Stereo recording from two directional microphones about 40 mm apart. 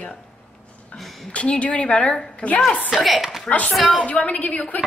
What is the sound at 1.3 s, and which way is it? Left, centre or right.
A woman's voice, left.